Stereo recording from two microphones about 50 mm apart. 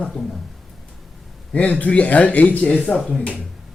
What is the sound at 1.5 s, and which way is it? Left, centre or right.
Speech, left.